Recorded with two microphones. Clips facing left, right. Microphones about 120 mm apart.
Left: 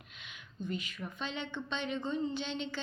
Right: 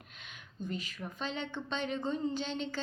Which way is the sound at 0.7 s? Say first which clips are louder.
Left 1 dB; 40° right (ahead or behind).